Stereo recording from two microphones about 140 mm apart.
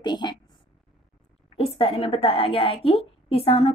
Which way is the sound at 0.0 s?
30° left (ahead or behind).